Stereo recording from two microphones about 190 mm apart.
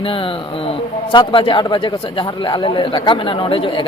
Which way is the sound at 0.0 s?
30° left (ahead or behind).